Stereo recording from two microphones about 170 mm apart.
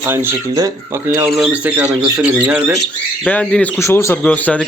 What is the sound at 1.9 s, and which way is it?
Speech, 20° right (ahead or behind).